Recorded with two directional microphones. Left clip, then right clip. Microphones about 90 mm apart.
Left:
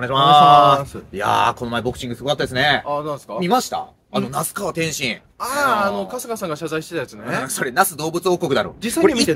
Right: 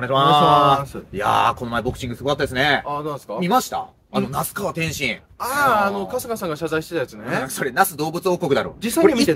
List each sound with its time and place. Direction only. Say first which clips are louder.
0.0 s speech: left 4 dB; 35° left (ahead or behind)
2.9 s speech: left 2 dB; 15° right (ahead or behind)
3.3 s speech: left 1 dB; 35° left (ahead or behind)
5.4 s speech: right 1 dB; 15° right (ahead or behind)
7.4 s speech: left 1 dB; 45° left (ahead or behind)